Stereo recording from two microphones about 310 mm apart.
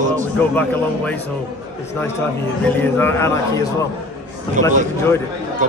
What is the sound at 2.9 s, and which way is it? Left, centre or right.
Speech, centre.